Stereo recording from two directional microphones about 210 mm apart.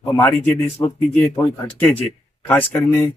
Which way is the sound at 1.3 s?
5° left (ahead or behind).